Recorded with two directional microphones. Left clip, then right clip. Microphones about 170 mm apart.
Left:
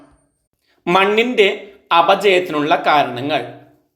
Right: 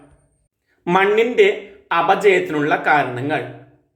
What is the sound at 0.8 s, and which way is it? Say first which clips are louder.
A man's voice: left 1 dB; 25° left (ahead or behind).